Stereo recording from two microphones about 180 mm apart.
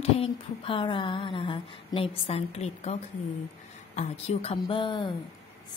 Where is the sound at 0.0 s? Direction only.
30° left (ahead or behind).